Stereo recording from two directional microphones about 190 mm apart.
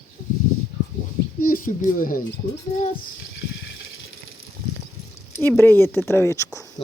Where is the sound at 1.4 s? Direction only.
50° left (ahead or behind).